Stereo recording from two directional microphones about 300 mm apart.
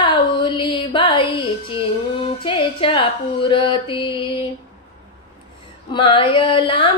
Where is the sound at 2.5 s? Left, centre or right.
Centre.